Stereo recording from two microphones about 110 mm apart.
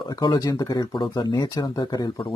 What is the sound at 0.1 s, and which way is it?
Speech, 40° left (ahead or behind).